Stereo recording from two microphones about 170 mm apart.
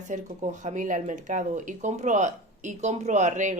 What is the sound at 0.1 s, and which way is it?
A woman's voice, 45° right (ahead or behind).